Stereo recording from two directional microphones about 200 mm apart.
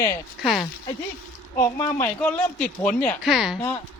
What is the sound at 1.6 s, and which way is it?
Speech, 15° left (ahead or behind).